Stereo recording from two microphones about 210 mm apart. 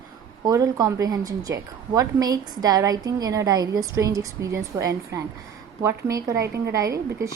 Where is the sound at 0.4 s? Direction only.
15° right (ahead or behind).